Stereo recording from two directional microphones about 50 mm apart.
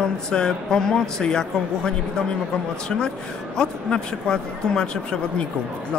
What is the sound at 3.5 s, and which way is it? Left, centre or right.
Speech, centre.